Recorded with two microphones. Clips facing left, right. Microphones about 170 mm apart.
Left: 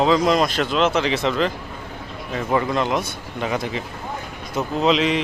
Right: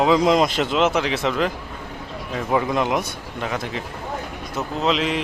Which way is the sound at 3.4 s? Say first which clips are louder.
Left 3 dB; centre (ahead or behind).